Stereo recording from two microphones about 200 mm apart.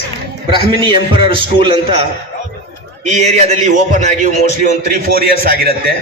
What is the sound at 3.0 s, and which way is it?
A man's voice, 35° right (ahead or behind).